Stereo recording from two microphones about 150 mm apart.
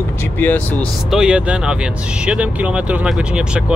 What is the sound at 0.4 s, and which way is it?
Speech, 10° left (ahead or behind).